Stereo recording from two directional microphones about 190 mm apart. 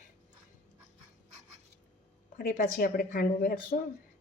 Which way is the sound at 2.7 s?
50° left (ahead or behind).